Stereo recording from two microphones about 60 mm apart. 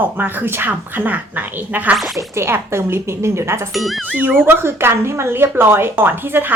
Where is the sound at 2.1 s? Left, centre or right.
Right.